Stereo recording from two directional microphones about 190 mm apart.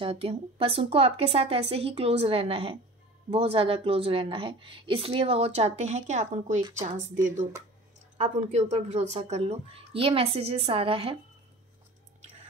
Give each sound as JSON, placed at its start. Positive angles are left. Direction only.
{"t": 0.0, "sound": "a woman's voice", "side_deg": -30}